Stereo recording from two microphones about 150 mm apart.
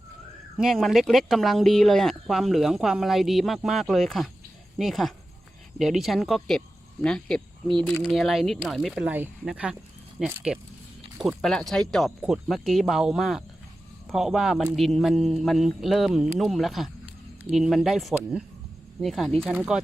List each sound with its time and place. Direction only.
0.5 s speech: centre (ahead or behind)
9.0 s speech: 10° right (ahead or behind)